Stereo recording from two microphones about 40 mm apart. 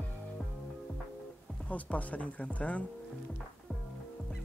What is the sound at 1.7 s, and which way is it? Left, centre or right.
Speech, left.